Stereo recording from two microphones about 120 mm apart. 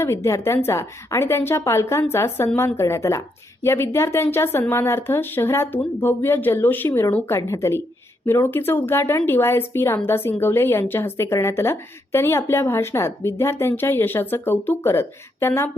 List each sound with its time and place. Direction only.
0.0 s a woman's voice: 20° left (ahead or behind)